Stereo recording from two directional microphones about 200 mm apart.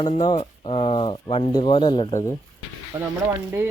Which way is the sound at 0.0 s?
25° left (ahead or behind).